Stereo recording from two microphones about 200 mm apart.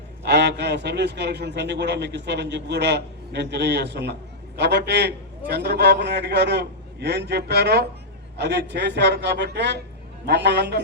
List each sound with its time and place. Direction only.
0.3 s a man's voice: 55° right (ahead or behind)